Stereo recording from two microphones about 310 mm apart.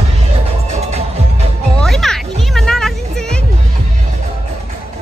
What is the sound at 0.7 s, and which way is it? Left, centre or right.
Music, centre.